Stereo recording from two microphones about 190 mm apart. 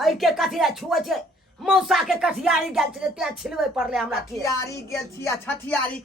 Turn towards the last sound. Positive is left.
turn(degrees=10)  # may be behind; listen again after turning